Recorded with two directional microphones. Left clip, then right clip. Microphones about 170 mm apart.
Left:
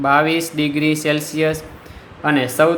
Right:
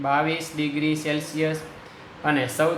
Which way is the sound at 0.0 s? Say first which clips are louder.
Left 8 dB; 40° left (ahead or behind).